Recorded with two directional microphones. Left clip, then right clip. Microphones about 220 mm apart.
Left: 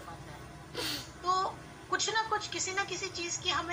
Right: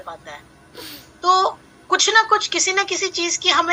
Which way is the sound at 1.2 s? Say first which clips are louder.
Right 15 dB; 40° right (ahead or behind).